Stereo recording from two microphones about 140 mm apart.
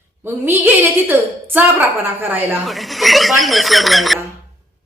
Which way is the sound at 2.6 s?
Centre (ahead or behind).